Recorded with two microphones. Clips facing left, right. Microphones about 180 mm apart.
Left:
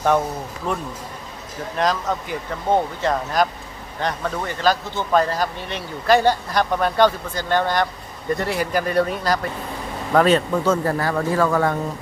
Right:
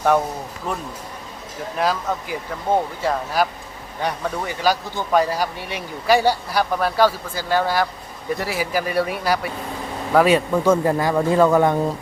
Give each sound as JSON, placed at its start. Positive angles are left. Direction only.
{"t": 0.7, "sound": "speech", "side_deg": -5}